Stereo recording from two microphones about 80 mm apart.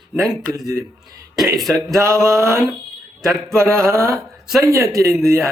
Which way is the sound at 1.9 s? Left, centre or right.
Right.